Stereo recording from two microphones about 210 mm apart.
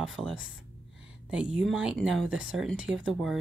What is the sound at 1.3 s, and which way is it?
Speech, 5° right (ahead or behind).